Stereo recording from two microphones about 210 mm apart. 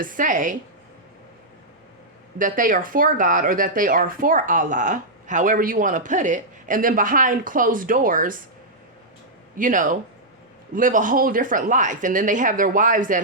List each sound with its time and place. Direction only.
0.0 s speech: 40° right (ahead or behind)
2.4 s speech: 40° right (ahead or behind)
9.6 s speech: 40° right (ahead or behind)